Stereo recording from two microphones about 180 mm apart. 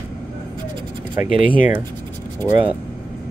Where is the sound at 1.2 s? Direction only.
45° left (ahead or behind).